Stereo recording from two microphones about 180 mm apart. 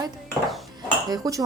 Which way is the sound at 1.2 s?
20° right (ahead or behind).